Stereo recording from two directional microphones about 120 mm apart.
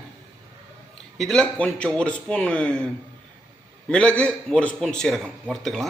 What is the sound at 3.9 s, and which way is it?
A man's voice, 10° left (ahead or behind).